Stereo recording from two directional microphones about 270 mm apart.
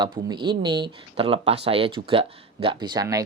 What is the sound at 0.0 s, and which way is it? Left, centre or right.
Speech, centre.